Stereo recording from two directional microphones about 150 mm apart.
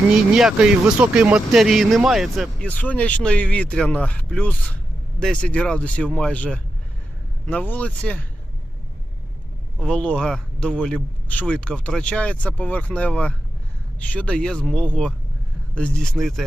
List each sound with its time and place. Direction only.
0.1 s speech: 5° right (ahead or behind)
2.6 s speech: 10° left (ahead or behind)
9.8 s speech: 5° left (ahead or behind)